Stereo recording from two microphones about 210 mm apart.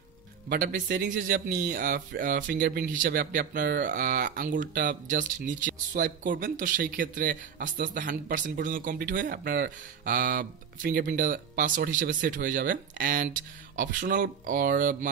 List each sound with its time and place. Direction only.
0.5 s speech: 45° right (ahead or behind)